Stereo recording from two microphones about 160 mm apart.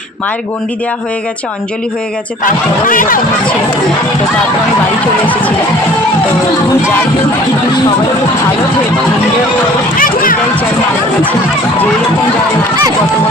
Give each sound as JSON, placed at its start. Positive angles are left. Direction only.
{"t": 2.4, "sound": "speech", "side_deg": 60}
{"t": 10.0, "sound": "speech", "side_deg": 60}